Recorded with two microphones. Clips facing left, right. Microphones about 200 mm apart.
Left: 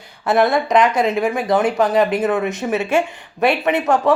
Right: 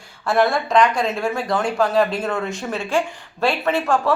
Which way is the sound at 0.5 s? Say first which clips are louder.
Left 2 dB; 20° left (ahead or behind).